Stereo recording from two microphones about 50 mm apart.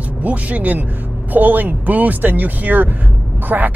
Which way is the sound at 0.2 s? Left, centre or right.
Right.